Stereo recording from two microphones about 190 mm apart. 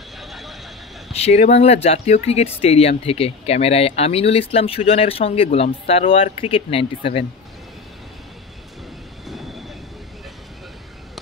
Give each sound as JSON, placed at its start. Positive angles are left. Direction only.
{"t": 0.2, "sound": "vehicle", "side_deg": 0}
{"t": 1.1, "sound": "speech", "side_deg": 35}